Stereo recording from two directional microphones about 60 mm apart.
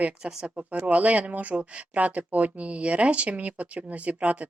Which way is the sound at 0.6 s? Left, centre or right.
Right.